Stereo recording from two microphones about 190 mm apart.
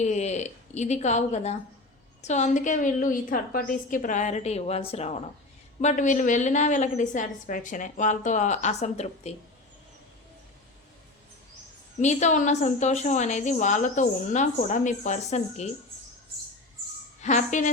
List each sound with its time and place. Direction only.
0.0 s a woman's voice: 35° left (ahead or behind)
11.9 s a woman's voice: 40° left (ahead or behind)
17.2 s a woman's voice: 40° left (ahead or behind)